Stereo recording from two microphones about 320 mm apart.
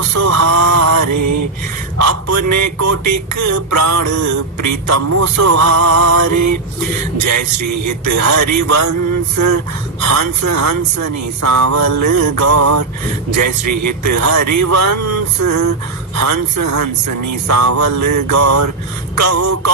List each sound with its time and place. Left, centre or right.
0.0 s mantra: right
2.0 s speech: right
7.9 s speech: right
10.0 s speech: right